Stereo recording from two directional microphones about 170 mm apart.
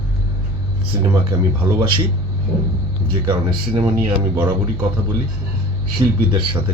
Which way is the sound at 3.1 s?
30° right (ahead or behind).